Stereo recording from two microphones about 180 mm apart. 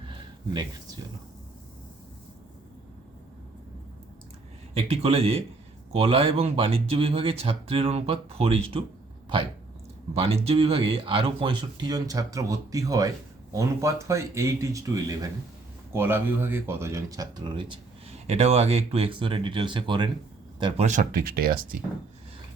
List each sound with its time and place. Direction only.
4.7 s speech: 35° right (ahead or behind)
10.2 s speech: 35° right (ahead or behind)
18.3 s speech: 35° right (ahead or behind)
20.8 s speech: 45° right (ahead or behind)